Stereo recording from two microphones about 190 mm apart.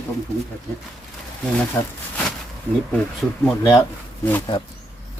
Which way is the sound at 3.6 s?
15° left (ahead or behind).